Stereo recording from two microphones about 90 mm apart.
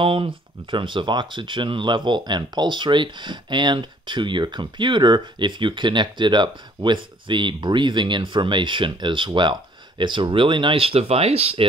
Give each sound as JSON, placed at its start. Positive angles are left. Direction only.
{"t": 0.0, "sound": "speech", "side_deg": -85}